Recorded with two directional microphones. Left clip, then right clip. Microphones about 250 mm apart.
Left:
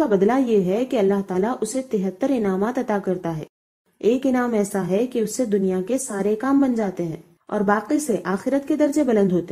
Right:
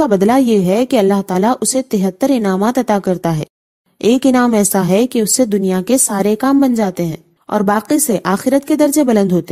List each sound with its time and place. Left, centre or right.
0.0 s a woman's voice: right